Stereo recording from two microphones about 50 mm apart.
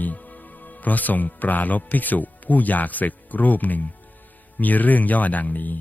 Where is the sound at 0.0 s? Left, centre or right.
Left.